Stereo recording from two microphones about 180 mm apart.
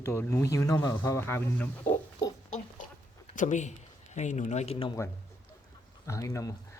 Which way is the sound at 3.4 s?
40° left (ahead or behind).